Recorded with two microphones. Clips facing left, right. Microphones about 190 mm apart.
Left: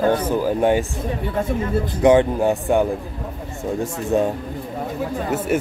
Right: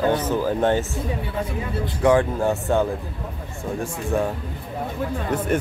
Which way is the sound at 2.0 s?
20° left (ahead or behind).